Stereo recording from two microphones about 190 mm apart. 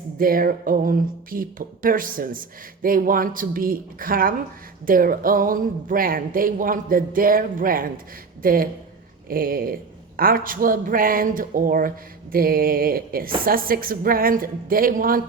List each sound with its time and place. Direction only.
0.2 s speech: 50° right (ahead or behind)